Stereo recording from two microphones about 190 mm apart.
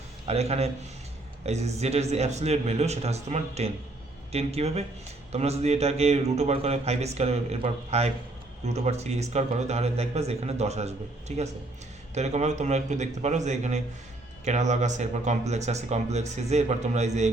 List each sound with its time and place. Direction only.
0.3 s a man's voice: 35° right (ahead or behind)